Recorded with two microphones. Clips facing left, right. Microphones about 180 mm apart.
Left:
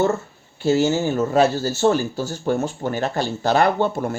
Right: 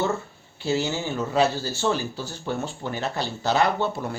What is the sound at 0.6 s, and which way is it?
Speech, 50° left (ahead or behind).